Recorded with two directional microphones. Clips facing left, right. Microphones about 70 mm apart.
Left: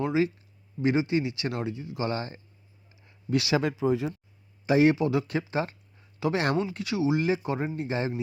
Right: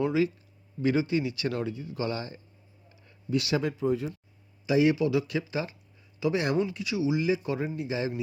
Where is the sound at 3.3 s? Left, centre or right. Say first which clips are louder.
Left 2 dB; left.